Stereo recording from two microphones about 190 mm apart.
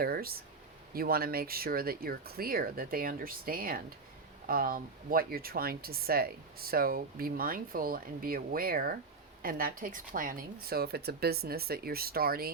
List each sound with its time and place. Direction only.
0.0 s speech: 50° right (ahead or behind)